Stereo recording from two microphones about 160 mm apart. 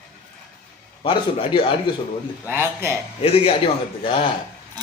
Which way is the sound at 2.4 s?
15° right (ahead or behind).